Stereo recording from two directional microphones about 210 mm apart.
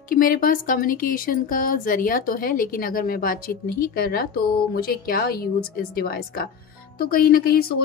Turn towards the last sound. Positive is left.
turn(degrees=45)  # may be behind; listen again after turning